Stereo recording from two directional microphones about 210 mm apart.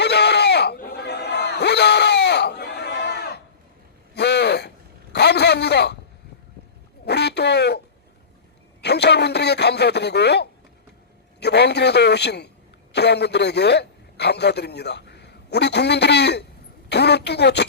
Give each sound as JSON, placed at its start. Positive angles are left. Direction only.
{"t": 0.0, "sound": "a sound", "side_deg": 50}
{"t": 7.0, "sound": "quack", "side_deg": 50}
{"t": 8.8, "sound": "a man's voice", "side_deg": 50}